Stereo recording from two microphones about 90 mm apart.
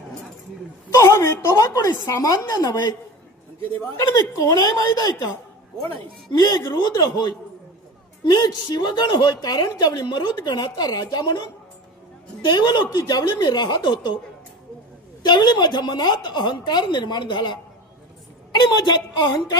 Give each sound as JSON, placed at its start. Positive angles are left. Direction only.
{"t": 0.9, "sound": "a woman's voice", "side_deg": 35}
{"t": 3.9, "sound": "speech", "side_deg": 40}
{"t": 6.7, "sound": "a woman's voice", "side_deg": 50}
{"t": 8.2, "sound": "a woman's voice", "side_deg": 50}
{"t": 12.5, "sound": "a woman's voice", "side_deg": 50}
{"t": 15.2, "sound": "a woman's voice", "side_deg": 55}